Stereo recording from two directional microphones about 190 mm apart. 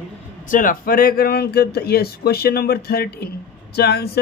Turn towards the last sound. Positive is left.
turn(degrees=55)  # may be behind; listen again after turning